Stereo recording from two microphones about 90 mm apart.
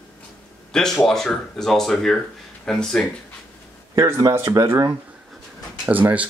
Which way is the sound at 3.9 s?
35° right (ahead or behind).